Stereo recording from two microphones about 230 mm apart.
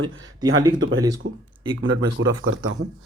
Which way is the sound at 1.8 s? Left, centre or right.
Right.